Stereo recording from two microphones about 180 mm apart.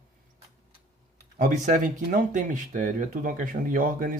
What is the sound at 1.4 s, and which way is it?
Speech, 45° right (ahead or behind).